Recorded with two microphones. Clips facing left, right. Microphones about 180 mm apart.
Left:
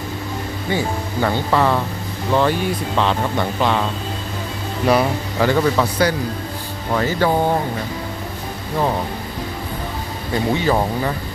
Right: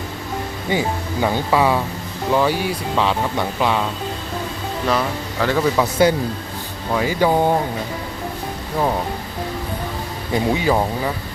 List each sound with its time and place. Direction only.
0.7 s speech: 15° right (ahead or behind)
4.9 s speech: 10° left (ahead or behind)
5.5 s a man's voice: 5° right (ahead or behind)
5.8 s speech: 20° right (ahead or behind)
6.9 s speech: 10° right (ahead or behind)
10.3 s speech: 10° right (ahead or behind)